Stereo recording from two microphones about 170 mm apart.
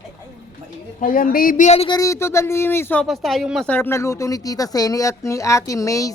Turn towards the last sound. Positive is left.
turn(degrees=20)  # may be behind; listen again after turning